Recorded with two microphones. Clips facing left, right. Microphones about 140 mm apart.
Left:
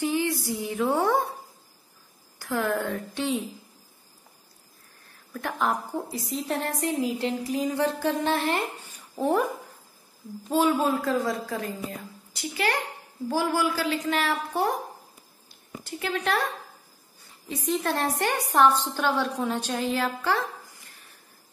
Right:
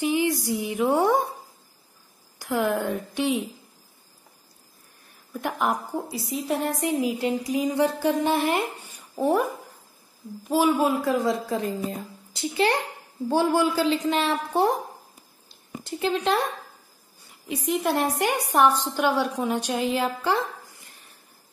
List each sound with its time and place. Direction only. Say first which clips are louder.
0.0 s a woman's voice: right 3 dB; 15° right (ahead or behind)
2.3 s a woman's voice: right 2 dB; 15° right (ahead or behind)
5.3 s a woman's voice: right 2 dB; 15° right (ahead or behind)
9.1 s speech: right 2 dB; centre (ahead or behind)
10.5 s a woman's voice: right 2 dB; 5° right (ahead or behind)
11.4 s a woman's voice: right 5 dB; 25° right (ahead or behind)
15.8 s a woman's voice: right 4 dB; 20° right (ahead or behind)
17.5 s a woman's voice: right 2 dB; 15° right (ahead or behind)